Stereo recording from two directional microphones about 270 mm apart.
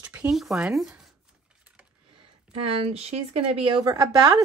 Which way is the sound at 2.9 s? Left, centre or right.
Right.